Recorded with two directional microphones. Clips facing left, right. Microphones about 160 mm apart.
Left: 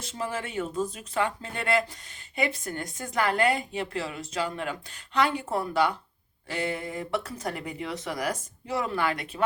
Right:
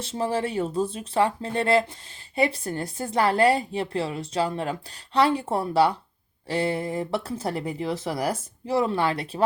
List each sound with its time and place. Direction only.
0.0 s a woman's voice: 30° right (ahead or behind)